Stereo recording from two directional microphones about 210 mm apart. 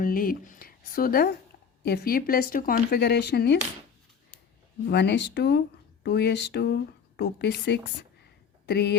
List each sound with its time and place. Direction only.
0.0 s speech: 45° left (ahead or behind)
4.9 s speech: 55° left (ahead or behind)